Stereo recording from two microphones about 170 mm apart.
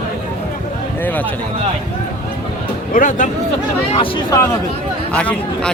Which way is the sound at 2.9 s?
50° left (ahead or behind).